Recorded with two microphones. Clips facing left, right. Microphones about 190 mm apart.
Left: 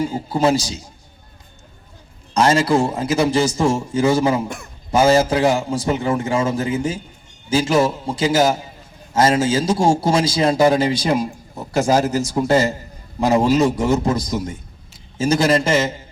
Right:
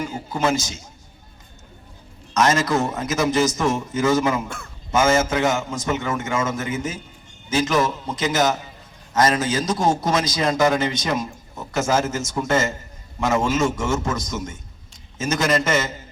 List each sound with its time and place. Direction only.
0.0 s a man's voice: 35° left (ahead or behind)
2.3 s a man's voice: 30° left (ahead or behind)
4.4 s a man's voice: 15° left (ahead or behind)
4.9 s a man's voice: 35° left (ahead or behind)